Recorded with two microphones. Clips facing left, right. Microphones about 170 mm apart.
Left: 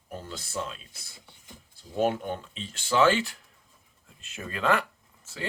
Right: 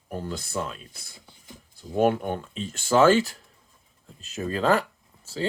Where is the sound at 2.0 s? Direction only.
55° right (ahead or behind).